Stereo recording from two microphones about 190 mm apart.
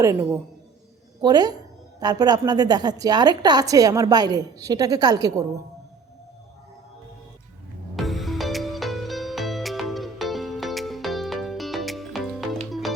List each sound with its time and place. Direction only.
0.0 s a man's voice: 15° right (ahead or behind)
7.9 s music: centre (ahead or behind)